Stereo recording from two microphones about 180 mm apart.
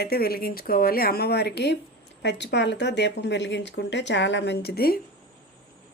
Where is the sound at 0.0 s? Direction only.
60° left (ahead or behind).